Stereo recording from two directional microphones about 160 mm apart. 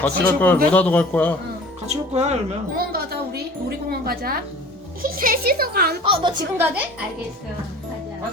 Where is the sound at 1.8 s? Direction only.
45° right (ahead or behind).